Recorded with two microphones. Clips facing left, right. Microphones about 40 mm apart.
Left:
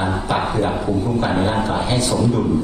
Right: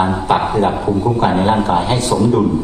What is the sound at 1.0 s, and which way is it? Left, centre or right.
Speech, right.